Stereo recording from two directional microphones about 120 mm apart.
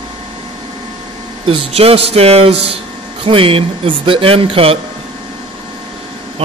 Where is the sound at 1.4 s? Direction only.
50° right (ahead or behind).